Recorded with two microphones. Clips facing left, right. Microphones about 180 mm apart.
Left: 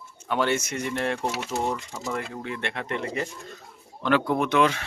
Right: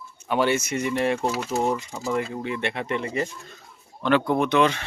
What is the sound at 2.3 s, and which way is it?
Speech, 15° right (ahead or behind).